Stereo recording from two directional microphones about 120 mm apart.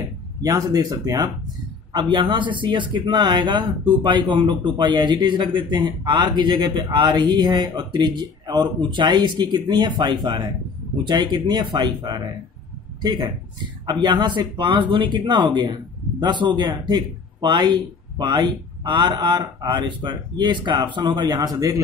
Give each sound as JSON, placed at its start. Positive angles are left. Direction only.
{"t": 0.4, "sound": "speech", "side_deg": -30}